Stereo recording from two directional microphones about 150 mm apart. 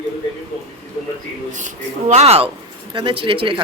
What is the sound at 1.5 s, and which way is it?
A man's voice, 50° right (ahead or behind).